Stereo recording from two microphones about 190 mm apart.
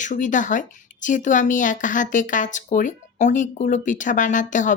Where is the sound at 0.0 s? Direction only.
40° left (ahead or behind).